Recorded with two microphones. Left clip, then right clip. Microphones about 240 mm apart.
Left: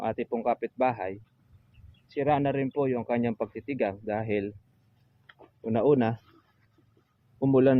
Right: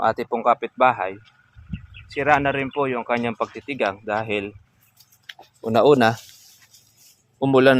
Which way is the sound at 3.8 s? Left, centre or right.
Right.